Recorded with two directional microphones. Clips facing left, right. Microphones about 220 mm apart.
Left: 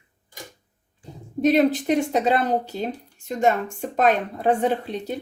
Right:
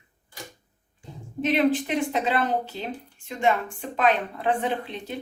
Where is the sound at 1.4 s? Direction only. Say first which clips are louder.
Left 4 dB; 40° left (ahead or behind).